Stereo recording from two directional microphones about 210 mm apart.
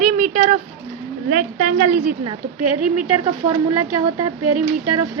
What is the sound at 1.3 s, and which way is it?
Speech, 40° right (ahead or behind).